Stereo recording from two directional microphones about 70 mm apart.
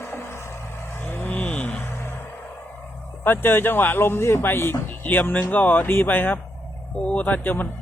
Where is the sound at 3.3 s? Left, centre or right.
Left.